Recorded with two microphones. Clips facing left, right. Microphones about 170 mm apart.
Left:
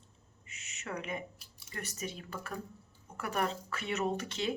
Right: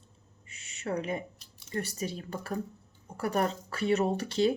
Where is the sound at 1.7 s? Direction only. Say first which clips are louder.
Right 7 dB; 35° right (ahead or behind).